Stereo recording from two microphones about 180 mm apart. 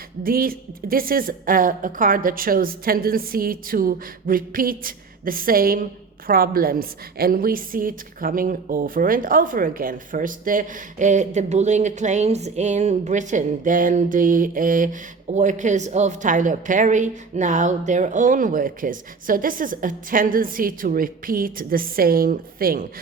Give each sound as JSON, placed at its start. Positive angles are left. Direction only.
{"t": 0.2, "sound": "a woman's voice", "side_deg": -55}